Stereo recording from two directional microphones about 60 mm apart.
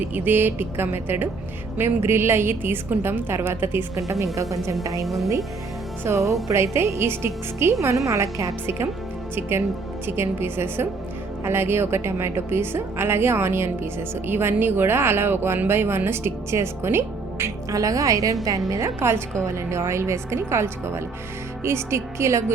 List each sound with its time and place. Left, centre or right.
0.0 s a woman's voice: right
3.9 s a woman's voice: right
5.0 s a woman's voice: centre
6.1 s a woman's voice: right
9.3 s a woman's voice: right
17.7 s a woman's voice: right
18.7 s a woman's voice: right